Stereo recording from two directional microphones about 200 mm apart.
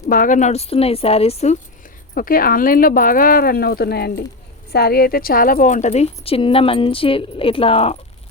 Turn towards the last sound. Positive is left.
turn(degrees=30)  # may be behind; listen again after turning